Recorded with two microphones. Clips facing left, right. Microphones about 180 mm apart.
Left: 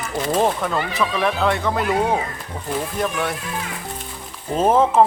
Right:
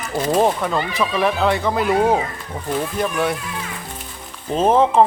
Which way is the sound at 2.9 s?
Centre (ahead or behind).